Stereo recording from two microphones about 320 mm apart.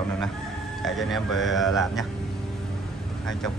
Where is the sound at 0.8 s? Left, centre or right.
Centre.